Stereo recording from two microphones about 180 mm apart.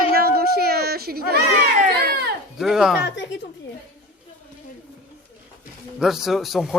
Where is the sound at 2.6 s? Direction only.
Centre (ahead or behind).